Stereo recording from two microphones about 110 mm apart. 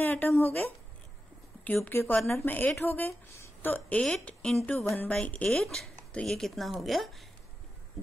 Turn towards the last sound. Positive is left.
turn(degrees=0)  # may be behind; listen again after turning